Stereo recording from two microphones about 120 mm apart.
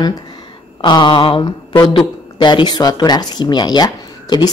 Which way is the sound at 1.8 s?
35° left (ahead or behind).